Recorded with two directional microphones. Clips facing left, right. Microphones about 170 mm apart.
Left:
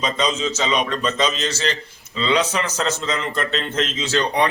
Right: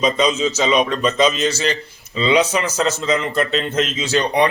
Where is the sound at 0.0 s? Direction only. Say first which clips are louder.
Right 5 dB; 10° right (ahead or behind).